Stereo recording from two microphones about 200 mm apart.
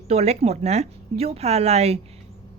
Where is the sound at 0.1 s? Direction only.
30° right (ahead or behind).